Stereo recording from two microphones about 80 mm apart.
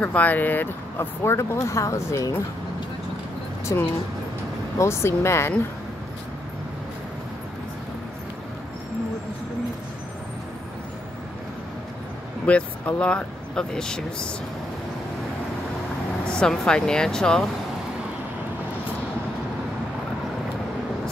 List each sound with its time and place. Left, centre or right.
0.0 s speech: centre; by 2.2 s left
3.7 s speech: left
12.4 s speech: centre
16.3 s speech: centre